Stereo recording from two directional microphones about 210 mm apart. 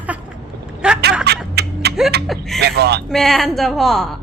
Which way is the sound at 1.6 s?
50° right (ahead or behind).